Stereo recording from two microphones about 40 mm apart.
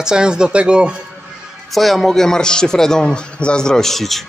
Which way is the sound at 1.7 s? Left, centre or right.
Centre.